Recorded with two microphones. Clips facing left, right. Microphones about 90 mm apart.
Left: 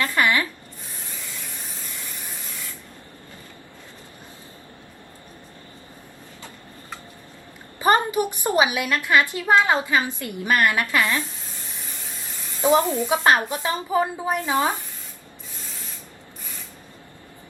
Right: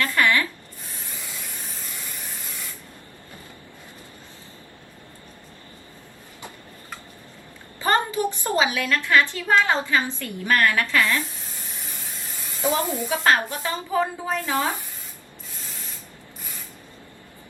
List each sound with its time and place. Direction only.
0.0 s zipper: 20° left (ahead or behind)
7.8 s a woman's voice: 20° left (ahead or behind)
13.1 s speech: 20° left (ahead or behind)